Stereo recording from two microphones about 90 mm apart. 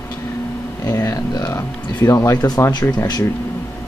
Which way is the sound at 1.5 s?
35° left (ahead or behind).